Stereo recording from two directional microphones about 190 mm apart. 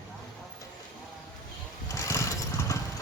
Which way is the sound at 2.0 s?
15° left (ahead or behind).